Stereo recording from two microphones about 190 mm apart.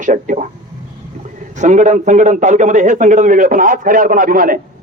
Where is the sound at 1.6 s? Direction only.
40° right (ahead or behind).